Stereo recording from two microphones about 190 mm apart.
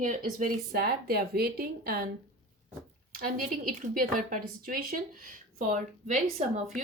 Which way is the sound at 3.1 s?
50° right (ahead or behind).